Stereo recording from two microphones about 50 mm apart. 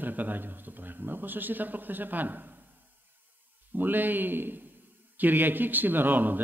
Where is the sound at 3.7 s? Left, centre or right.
Right.